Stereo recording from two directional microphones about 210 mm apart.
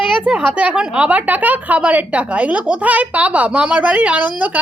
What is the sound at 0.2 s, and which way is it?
A woman's voice, 5° right (ahead or behind).